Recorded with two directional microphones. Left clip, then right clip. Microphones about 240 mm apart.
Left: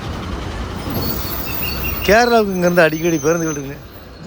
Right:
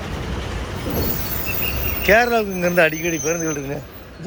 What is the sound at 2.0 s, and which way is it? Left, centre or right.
Speech, centre.